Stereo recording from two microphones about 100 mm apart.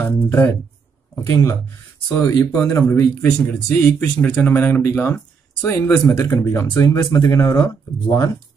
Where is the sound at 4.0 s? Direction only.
20° left (ahead or behind).